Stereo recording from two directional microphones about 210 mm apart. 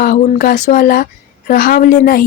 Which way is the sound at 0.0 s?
45° left (ahead or behind).